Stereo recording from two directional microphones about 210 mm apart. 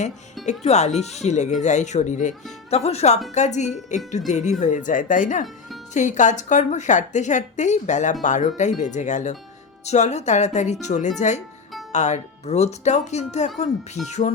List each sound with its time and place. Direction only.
0.6 s speech: 30° left (ahead or behind)